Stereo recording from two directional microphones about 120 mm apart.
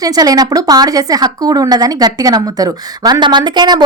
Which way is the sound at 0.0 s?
30° right (ahead or behind).